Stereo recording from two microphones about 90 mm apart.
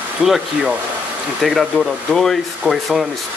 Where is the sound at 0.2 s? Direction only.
5° right (ahead or behind).